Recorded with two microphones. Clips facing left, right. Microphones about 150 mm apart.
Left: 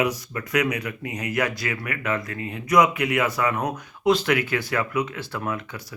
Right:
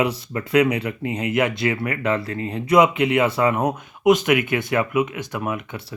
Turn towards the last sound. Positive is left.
turn(degrees=-20)  # may be behind; listen again after turning